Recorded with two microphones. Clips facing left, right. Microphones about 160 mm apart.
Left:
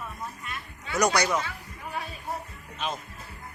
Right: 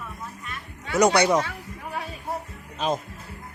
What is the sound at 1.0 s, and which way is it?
Speech, 25° right (ahead or behind).